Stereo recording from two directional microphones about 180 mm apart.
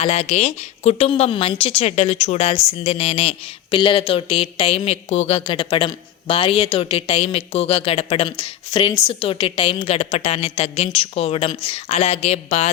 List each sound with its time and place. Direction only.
0.0 s a woman's voice: 35° left (ahead or behind)